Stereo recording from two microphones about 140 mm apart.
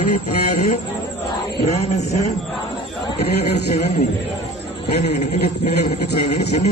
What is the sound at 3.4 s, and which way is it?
Speech, 50° left (ahead or behind).